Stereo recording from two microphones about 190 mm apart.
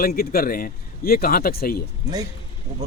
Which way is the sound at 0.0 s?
50° left (ahead or behind).